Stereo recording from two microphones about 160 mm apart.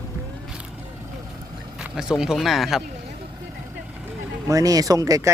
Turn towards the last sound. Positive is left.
turn(degrees=-20)  # may be behind; listen again after turning